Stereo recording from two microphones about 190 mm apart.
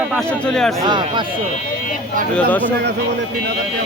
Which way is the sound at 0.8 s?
25° right (ahead or behind).